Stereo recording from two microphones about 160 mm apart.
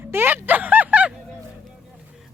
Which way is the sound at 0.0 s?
15° right (ahead or behind).